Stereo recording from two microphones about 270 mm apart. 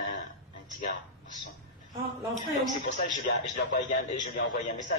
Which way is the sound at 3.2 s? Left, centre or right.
Left.